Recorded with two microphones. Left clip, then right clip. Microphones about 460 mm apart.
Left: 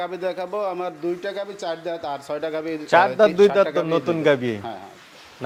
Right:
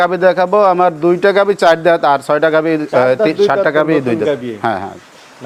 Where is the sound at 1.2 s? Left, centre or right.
Right.